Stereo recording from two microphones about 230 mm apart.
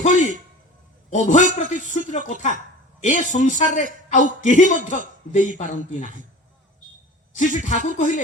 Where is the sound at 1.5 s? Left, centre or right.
Left.